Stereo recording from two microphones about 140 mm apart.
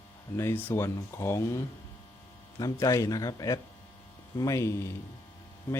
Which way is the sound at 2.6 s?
25° left (ahead or behind).